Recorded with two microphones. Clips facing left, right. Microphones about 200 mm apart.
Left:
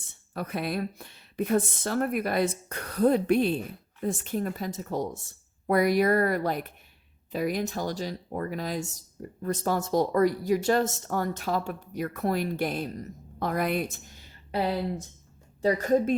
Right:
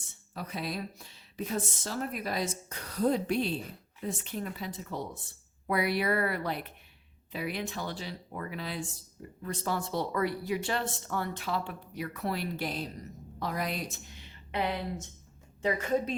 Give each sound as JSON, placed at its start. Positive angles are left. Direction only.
{"t": 0.3, "sound": "speech", "side_deg": 55}
{"t": 14.5, "sound": "speech", "side_deg": 35}